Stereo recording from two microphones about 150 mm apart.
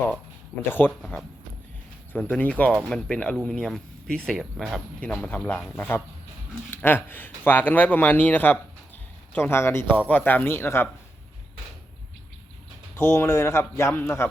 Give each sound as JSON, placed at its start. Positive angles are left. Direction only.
{"t": 0.7, "sound": "a man's voice", "side_deg": 10}
{"t": 13.0, "sound": "a man's voice", "side_deg": 15}